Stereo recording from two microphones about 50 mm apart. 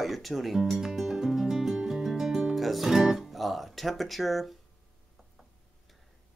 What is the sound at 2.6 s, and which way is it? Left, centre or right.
Speech, centre.